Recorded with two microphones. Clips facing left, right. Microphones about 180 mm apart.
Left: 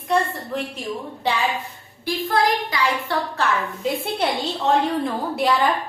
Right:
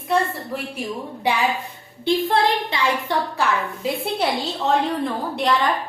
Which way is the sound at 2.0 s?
25° right (ahead or behind).